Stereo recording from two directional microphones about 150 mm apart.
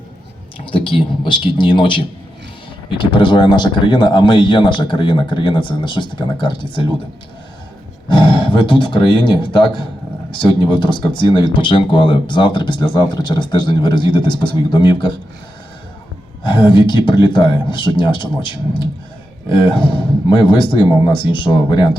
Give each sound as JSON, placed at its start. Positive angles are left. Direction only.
{"t": 0.7, "sound": "speech", "side_deg": 35}
{"t": 8.0, "sound": "speech", "side_deg": 30}
{"t": 16.4, "sound": "speech", "side_deg": 35}